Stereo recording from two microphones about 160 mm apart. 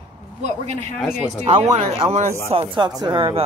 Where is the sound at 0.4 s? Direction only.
45° right (ahead or behind).